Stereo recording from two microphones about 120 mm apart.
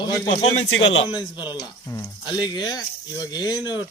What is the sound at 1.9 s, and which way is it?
Speech, 20° left (ahead or behind).